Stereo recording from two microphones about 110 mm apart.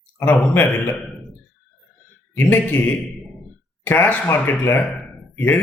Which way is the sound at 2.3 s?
20° left (ahead or behind).